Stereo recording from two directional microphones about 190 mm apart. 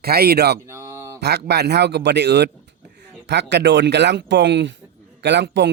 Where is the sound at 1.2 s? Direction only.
60° right (ahead or behind).